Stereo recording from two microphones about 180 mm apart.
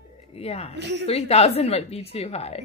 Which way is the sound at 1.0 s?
35° left (ahead or behind).